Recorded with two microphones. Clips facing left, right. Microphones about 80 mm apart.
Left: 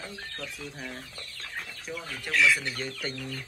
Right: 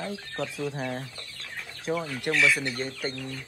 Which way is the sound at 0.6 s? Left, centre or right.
Right.